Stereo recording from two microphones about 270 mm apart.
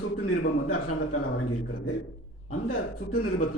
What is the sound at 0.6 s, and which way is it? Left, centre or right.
Speech, left.